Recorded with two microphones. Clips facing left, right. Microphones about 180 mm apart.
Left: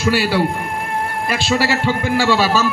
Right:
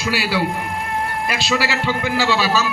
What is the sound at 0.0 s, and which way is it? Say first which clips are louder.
A man's voice: left 4 dB; 50° left (ahead or behind).